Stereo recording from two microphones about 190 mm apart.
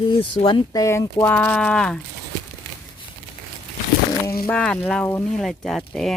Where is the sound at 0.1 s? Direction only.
25° left (ahead or behind); by 2.0 s 5° left (ahead or behind).